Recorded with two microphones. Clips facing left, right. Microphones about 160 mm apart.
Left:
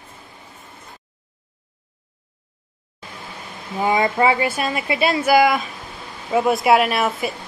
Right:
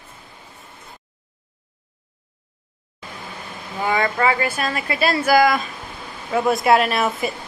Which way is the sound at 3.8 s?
15° left (ahead or behind).